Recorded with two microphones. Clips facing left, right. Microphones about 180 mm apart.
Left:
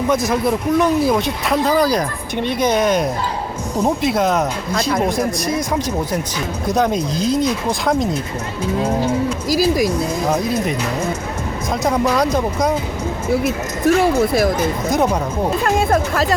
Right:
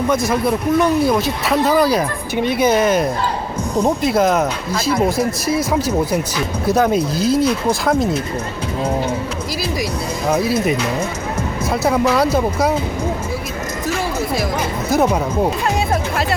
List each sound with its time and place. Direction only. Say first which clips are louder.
0.1 s speech: left 1 dB; centre (ahead or behind)
6.7 s speech: right 2 dB; 5° right (ahead or behind)
9.5 s speech: left 9 dB; 45° left (ahead or behind)
11.7 s speech: right 1 dB; 5° right (ahead or behind)
13.4 s speech: left 6 dB; 60° left (ahead or behind)
14.8 s speech: right 3 dB; 5° right (ahead or behind)